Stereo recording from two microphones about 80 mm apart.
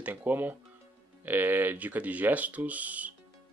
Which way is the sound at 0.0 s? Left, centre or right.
Right.